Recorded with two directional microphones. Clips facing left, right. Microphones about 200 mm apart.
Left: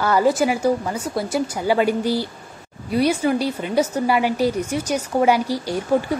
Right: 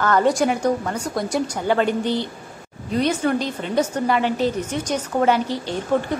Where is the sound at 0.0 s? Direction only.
5° left (ahead or behind).